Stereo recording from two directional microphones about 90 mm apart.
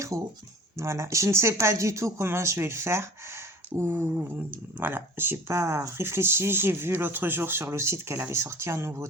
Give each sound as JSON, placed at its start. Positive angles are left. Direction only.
{"t": 0.1, "sound": "speech", "side_deg": -35}